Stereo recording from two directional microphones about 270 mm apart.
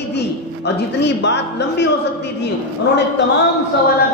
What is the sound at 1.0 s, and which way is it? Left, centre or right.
Speech, left.